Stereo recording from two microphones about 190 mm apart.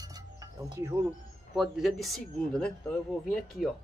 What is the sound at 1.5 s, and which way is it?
Speech, centre (ahead or behind).